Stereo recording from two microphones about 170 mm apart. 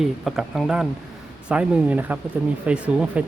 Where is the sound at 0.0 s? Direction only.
Centre (ahead or behind).